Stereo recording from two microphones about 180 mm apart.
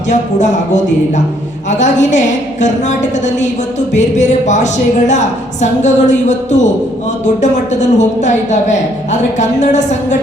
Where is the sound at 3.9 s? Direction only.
40° left (ahead or behind).